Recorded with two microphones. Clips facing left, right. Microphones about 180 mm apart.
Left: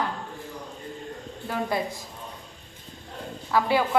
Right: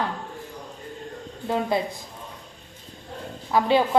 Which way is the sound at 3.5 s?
20° right (ahead or behind).